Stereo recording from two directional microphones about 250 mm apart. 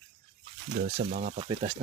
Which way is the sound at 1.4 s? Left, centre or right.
Centre.